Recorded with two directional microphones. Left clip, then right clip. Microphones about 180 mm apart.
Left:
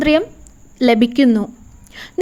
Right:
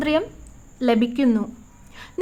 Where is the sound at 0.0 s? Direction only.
30° left (ahead or behind).